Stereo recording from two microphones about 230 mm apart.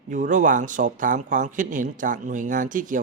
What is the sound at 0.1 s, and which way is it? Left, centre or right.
A man's voice, right.